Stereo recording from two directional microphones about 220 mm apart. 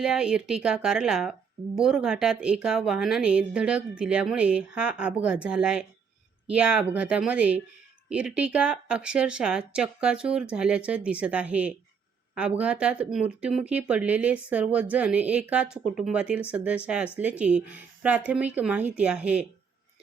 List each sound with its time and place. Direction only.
0.0 s speech: 5° right (ahead or behind)